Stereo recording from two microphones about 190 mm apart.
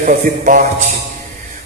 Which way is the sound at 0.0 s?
45° right (ahead or behind).